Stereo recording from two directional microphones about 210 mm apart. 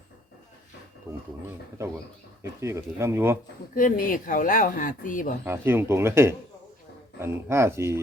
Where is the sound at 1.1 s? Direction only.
10° right (ahead or behind).